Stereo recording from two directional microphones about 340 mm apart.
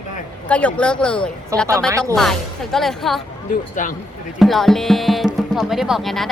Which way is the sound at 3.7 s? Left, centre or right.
Left.